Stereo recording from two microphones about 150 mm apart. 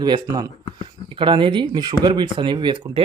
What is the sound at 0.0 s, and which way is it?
Speech, 25° right (ahead or behind).